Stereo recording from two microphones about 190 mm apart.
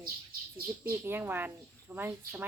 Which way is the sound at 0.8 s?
10° right (ahead or behind).